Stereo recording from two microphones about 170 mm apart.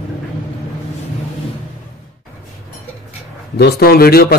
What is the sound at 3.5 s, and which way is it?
Speech, 70° left (ahead or behind).